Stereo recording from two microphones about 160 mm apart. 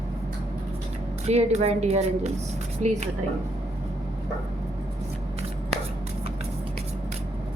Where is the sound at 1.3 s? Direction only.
40° right (ahead or behind).